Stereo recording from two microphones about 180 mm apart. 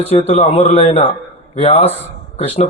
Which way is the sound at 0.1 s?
35° left (ahead or behind).